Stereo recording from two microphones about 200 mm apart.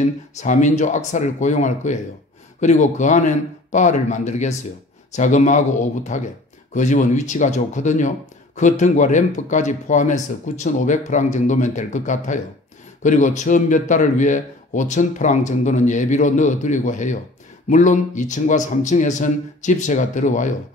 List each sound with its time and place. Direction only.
0.0 s a man's voice: 35° left (ahead or behind)